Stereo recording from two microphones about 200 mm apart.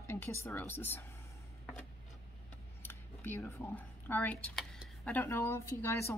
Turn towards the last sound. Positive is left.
turn(degrees=15)  # may be behind; listen again after turning